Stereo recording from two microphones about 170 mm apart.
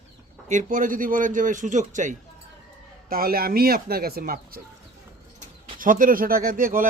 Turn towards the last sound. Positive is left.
turn(degrees=-55)  # may be behind; listen again after turning